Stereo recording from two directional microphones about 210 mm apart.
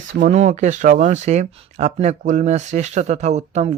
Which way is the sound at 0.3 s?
35° right (ahead or behind).